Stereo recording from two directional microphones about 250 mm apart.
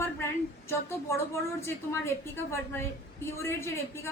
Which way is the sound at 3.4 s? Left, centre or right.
Centre.